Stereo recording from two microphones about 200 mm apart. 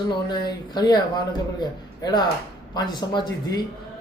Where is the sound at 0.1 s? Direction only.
20° left (ahead or behind).